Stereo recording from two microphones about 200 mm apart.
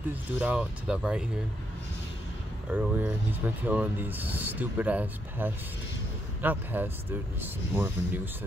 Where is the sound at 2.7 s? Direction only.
10° right (ahead or behind).